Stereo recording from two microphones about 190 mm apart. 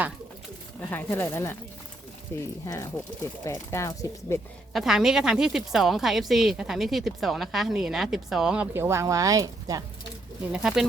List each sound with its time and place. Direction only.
0.9 s speech: 10° left (ahead or behind)
4.7 s a woman's voice: centre (ahead or behind); by 9.8 s 20° right (ahead or behind)
10.5 s a woman's voice: 5° right (ahead or behind)